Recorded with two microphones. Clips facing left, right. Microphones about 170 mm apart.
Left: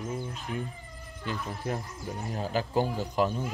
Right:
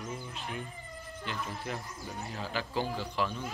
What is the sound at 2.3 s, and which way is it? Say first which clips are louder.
A man's voice: left 7 dB; 45° left (ahead or behind).